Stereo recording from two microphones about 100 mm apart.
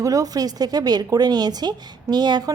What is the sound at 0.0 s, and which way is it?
Speech, 35° right (ahead or behind).